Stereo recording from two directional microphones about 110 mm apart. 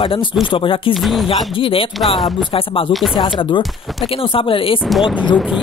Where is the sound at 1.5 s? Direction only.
55° left (ahead or behind).